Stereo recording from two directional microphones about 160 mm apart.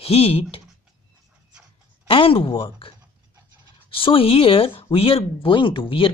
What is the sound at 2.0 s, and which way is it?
Speech, 35° left (ahead or behind).